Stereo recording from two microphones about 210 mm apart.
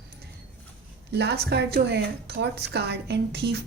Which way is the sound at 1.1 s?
50° right (ahead or behind).